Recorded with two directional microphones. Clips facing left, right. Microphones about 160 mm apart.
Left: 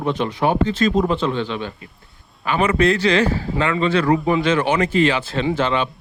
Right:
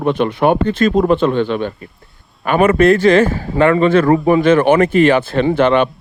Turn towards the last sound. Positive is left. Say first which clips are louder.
# right 7 dB
turn(degrees=-60)  # may be behind; listen again after turning